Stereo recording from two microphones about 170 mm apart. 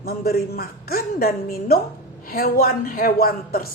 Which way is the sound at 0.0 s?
65° left (ahead or behind).